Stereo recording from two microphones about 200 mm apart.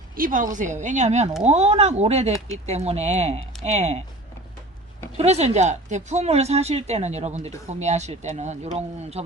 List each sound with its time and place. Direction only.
0.2 s speech: 40° right (ahead or behind)
5.1 s speech: 30° right (ahead or behind)